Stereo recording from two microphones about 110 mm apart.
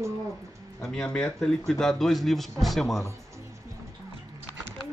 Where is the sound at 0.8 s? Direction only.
5° left (ahead or behind).